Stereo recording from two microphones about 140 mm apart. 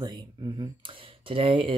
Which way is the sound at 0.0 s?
30° right (ahead or behind).